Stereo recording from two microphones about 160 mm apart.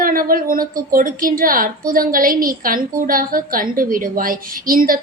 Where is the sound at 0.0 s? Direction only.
60° right (ahead or behind).